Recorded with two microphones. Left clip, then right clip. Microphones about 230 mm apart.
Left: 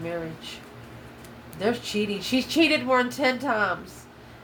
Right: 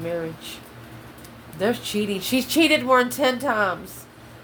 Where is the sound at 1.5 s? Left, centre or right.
Right.